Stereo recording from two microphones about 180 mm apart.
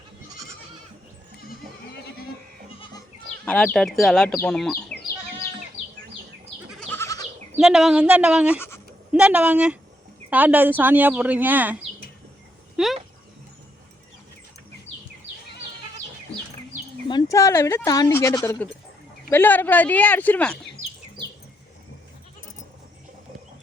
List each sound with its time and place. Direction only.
3.4 s speech: 10° left (ahead or behind)
4.9 s a sound: 60° left (ahead or behind)
6.7 s goat: 5° left (ahead or behind)
7.0 s goat: 20° left (ahead or behind)
7.6 s speech: 5° right (ahead or behind)
17.1 s speech: 20° left (ahead or behind)